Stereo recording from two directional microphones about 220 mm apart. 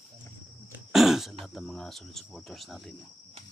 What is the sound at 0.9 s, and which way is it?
Throat clearing, centre (ahead or behind).